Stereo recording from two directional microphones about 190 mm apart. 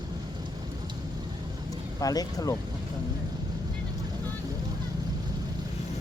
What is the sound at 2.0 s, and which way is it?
Speech, 20° left (ahead or behind).